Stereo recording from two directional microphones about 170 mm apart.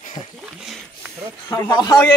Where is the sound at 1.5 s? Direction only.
20° left (ahead or behind).